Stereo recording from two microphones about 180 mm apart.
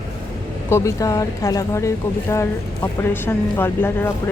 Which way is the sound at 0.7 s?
20° left (ahead or behind).